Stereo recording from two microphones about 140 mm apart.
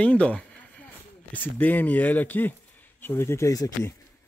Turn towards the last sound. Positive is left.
turn(degrees=25)  # may be behind; listen again after turning